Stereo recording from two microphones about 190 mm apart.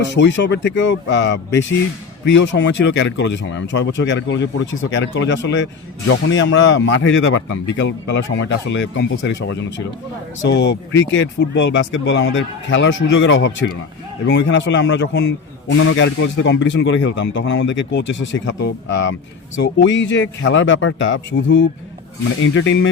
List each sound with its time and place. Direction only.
0.1 s a man's voice: 70° left (ahead or behind)
15.7 s a man's voice: 85° left